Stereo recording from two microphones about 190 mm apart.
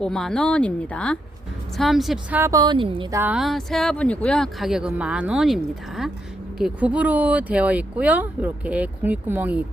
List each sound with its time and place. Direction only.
0.0 s speech: centre (ahead or behind)
2.4 s speech: 20° right (ahead or behind)
3.1 s speech: 10° right (ahead or behind)
6.6 s speech: 5° right (ahead or behind)